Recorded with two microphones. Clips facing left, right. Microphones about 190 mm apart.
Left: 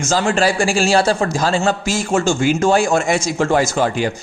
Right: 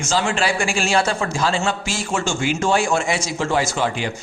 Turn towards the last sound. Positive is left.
turn(degrees=45)  # may be behind; listen again after turning